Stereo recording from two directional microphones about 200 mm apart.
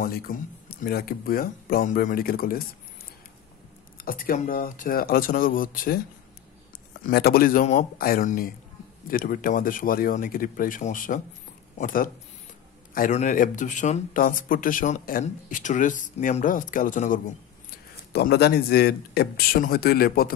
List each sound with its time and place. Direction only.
0.0 s speech: 50° left (ahead or behind)
4.0 s speech: 45° left (ahead or behind)
7.0 s speech: 50° left (ahead or behind)